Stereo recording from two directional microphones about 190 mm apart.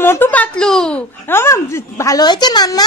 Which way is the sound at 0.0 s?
10° left (ahead or behind).